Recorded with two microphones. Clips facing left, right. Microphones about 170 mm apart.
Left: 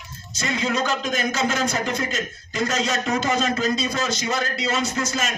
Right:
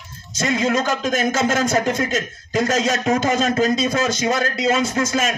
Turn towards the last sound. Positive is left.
turn(degrees=-50)  # may be behind; listen again after turning